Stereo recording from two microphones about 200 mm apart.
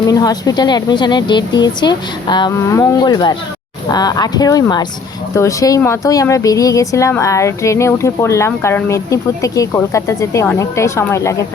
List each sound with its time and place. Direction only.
0.1 s speech: 20° left (ahead or behind)